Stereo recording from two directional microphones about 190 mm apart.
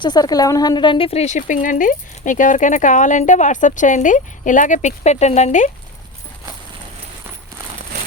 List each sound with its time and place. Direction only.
0.0 s speech: 20° left (ahead or behind); by 5.7 s 40° left (ahead or behind)